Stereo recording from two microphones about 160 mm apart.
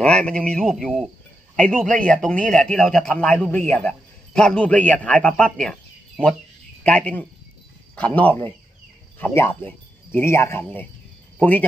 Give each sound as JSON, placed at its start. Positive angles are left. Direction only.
{"t": 0.0, "sound": "a man's voice", "side_deg": 5}